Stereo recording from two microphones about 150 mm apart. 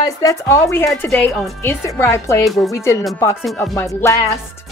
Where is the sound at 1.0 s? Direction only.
5° left (ahead or behind); by 2.3 s 20° left (ahead or behind).